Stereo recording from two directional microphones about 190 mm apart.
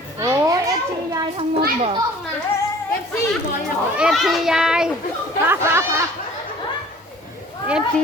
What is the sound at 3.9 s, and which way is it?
Children playing, centre (ahead or behind).